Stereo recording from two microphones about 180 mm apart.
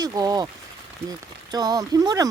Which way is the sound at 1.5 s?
20° right (ahead or behind).